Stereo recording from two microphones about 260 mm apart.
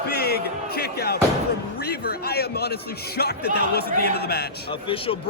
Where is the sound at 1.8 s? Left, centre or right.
Left.